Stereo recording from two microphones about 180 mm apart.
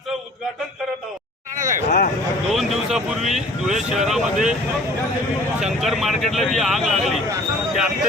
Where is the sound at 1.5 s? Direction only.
45° right (ahead or behind).